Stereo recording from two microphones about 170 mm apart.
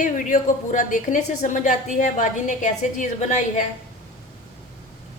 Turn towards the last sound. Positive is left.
turn(degrees=45)  # may be behind; listen again after turning